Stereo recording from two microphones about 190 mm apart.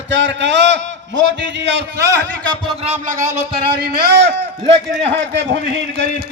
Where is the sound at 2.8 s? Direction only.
40° right (ahead or behind).